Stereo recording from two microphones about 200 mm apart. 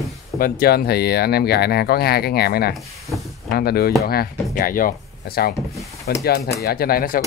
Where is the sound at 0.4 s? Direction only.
50° left (ahead or behind).